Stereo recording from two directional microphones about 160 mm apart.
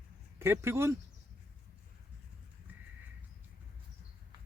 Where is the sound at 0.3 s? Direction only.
15° right (ahead or behind).